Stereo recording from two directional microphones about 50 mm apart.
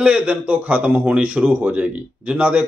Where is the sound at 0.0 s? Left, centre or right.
Right.